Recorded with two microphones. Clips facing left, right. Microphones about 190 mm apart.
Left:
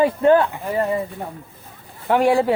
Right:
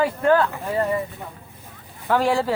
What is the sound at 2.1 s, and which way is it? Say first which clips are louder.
Speech: left 4 dB; 20° left (ahead or behind).